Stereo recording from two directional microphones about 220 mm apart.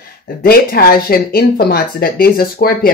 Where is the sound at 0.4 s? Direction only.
40° left (ahead or behind).